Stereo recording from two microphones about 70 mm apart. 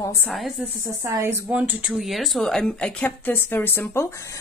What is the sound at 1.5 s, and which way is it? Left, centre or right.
Speech, right.